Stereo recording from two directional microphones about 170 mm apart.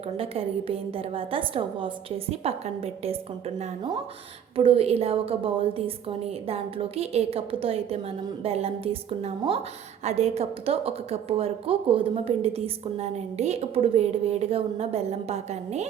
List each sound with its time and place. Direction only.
0.2 s a woman's voice: 35° right (ahead or behind)